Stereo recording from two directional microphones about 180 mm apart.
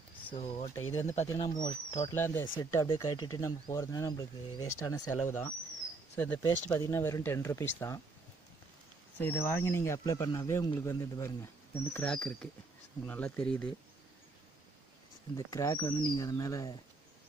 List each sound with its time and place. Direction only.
0.3 s speech: 35° left (ahead or behind)
0.7 s speech: 15° left (ahead or behind)
2.0 s speech: 15° left (ahead or behind)
9.2 s speech: 10° left (ahead or behind)
11.9 s speech: 5° left (ahead or behind)
15.3 s speech: 20° left (ahead or behind)